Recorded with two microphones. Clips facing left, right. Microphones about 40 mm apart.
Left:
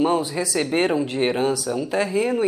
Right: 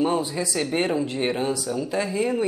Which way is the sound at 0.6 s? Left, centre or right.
Centre.